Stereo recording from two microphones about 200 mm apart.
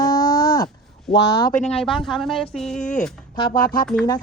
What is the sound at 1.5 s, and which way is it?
Speech, 35° left (ahead or behind).